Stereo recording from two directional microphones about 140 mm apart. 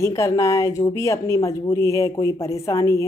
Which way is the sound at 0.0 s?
20° left (ahead or behind).